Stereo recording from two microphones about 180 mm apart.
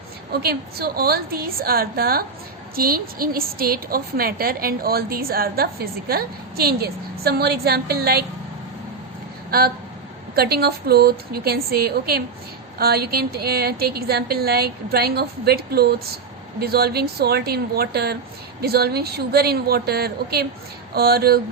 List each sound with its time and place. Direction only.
0.3 s a woman's voice: 60° right (ahead or behind)
9.5 s a woman's voice: 55° right (ahead or behind)